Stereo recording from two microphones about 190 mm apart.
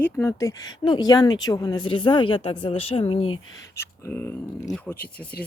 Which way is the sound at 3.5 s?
15° left (ahead or behind).